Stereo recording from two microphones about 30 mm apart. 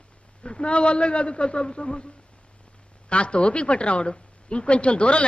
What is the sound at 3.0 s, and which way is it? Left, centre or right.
Speech, left.